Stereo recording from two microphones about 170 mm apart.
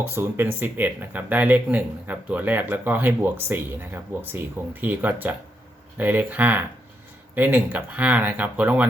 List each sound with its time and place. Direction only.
0.0 s speech: 15° right (ahead or behind)